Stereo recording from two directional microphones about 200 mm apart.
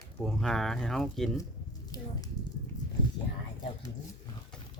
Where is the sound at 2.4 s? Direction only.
20° left (ahead or behind).